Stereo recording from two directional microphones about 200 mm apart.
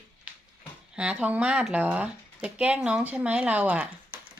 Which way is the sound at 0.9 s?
5° right (ahead or behind).